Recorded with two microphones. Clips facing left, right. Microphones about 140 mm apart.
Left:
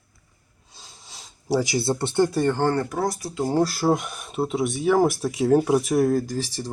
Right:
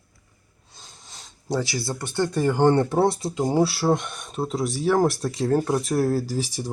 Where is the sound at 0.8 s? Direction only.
Centre (ahead or behind).